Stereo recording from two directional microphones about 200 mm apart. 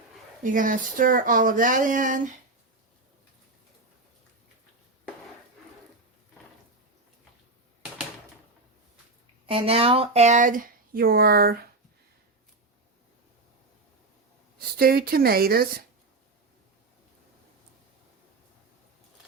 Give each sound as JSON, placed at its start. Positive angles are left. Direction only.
{"t": 0.4, "sound": "speech", "side_deg": -40}
{"t": 9.5, "sound": "speech", "side_deg": -30}
{"t": 14.8, "sound": "speech", "side_deg": -50}